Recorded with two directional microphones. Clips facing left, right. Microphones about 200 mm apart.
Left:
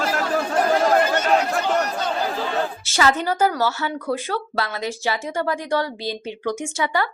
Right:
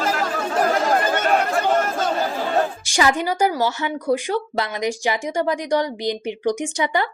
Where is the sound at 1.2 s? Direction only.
50° right (ahead or behind).